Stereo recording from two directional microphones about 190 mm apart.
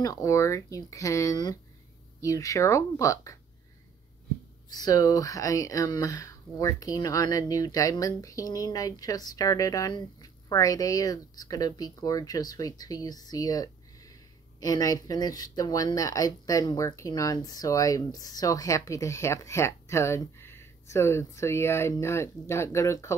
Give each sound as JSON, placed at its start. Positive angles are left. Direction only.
{"t": 0.0, "sound": "speech", "side_deg": 20}
{"t": 4.6, "sound": "speech", "side_deg": 20}